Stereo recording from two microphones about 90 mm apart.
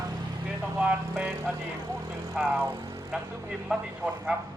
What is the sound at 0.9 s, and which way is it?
Speech, 10° right (ahead or behind).